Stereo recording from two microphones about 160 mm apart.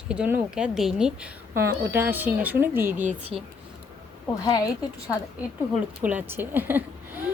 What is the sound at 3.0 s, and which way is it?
Speech, 45° right (ahead or behind).